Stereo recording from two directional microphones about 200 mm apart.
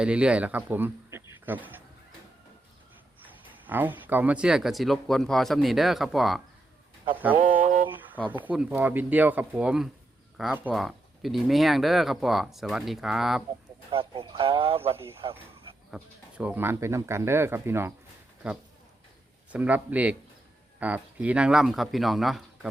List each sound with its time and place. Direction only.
0.0 s speech: 5° right (ahead or behind)
3.7 s speech: 10° right (ahead or behind)
7.3 s mantra: 40° right (ahead or behind)
7.9 s a sound: 10° right (ahead or behind)
8.3 s speech: 10° right (ahead or behind)
13.9 s speech: 25° right (ahead or behind)
15.9 s speech: 5° right (ahead or behind)